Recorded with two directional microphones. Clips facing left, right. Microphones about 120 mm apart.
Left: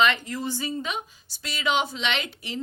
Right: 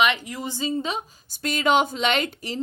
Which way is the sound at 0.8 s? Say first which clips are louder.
Right 3 dB; 30° right (ahead or behind).